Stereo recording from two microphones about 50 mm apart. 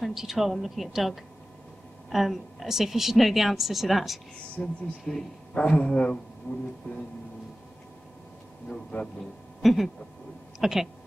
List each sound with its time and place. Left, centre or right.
0.0 s a woman's voice: centre
4.6 s speech: centre
8.9 s a man's voice: left
9.6 s a sound: centre
10.6 s speech: centre